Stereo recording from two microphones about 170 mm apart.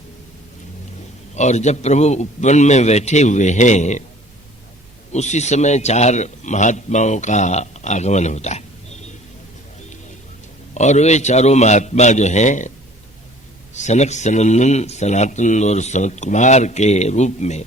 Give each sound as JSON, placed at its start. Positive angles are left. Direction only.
{"t": 1.4, "sound": "speech", "side_deg": 45}
{"t": 5.1, "sound": "speech", "side_deg": 40}
{"t": 10.8, "sound": "speech", "side_deg": 45}
{"t": 13.7, "sound": "speech", "side_deg": 40}